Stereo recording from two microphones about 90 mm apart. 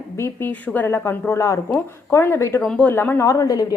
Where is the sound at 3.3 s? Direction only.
40° left (ahead or behind).